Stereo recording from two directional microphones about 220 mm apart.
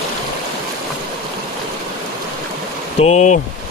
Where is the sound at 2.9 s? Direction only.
30° left (ahead or behind).